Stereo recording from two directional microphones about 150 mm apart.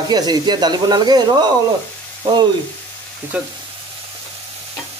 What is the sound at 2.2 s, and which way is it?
Frying, 30° right (ahead or behind).